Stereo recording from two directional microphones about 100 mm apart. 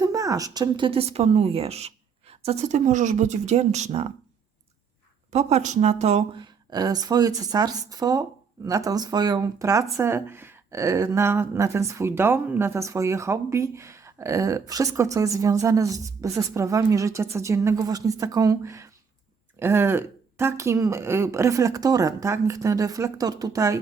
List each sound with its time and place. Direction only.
0.0 s a woman's voice: 35° right (ahead or behind)
0.9 s a woman's voice: 80° right
5.4 s a woman's voice: 90° right
6.3 s speech: 45° right (ahead or behind)